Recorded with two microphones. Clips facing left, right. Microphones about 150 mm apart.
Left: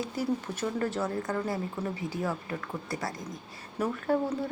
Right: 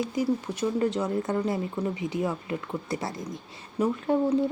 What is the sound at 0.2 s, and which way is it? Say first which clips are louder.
Speech: right 4 dB; 15° right (ahead or behind).